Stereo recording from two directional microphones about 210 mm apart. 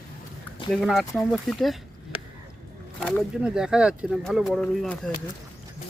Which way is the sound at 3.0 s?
5° left (ahead or behind).